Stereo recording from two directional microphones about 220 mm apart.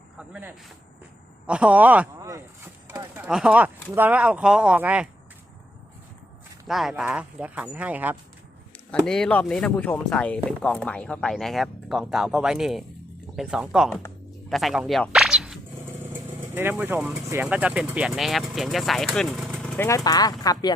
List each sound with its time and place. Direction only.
0.2 s speech: 5° right (ahead or behind)
2.8 s a sound: 10° right (ahead or behind)
3.2 s speech: 5° right (ahead or behind)
6.7 s speech: centre (ahead or behind)
8.9 s speech: 5° left (ahead or behind)